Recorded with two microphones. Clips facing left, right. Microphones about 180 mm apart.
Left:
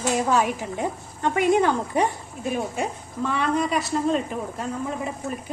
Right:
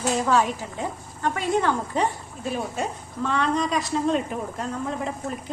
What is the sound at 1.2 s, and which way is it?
Speech, 15° left (ahead or behind).